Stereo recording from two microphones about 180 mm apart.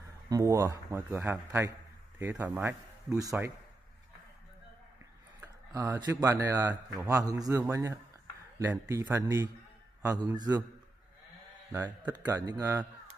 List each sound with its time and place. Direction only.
0.3 s a man's voice: 15° right (ahead or behind)
5.4 s a sound: 20° right (ahead or behind)
5.9 s a man's voice: 20° right (ahead or behind)
12.4 s speech: 20° right (ahead or behind)